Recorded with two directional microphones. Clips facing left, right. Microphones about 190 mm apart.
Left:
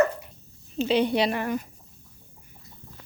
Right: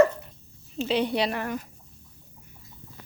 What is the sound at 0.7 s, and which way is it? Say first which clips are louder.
Speech: left 3 dB; centre (ahead or behind).